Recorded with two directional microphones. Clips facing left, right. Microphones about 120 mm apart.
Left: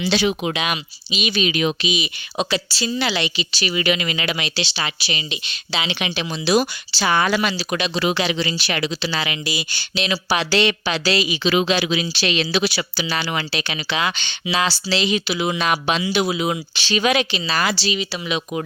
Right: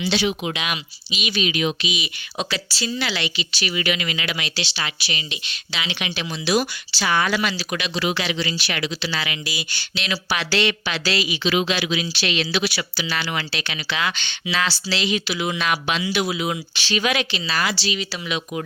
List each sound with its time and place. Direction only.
0.0 s speech: 45° left (ahead or behind)
1.8 s speech: 25° left (ahead or behind)
17.9 s speech: 20° left (ahead or behind)